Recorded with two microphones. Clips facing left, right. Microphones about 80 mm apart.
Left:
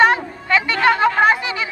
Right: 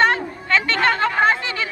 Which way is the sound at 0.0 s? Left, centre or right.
Centre.